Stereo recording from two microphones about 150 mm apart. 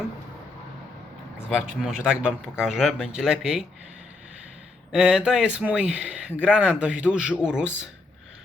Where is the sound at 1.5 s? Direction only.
5° right (ahead or behind).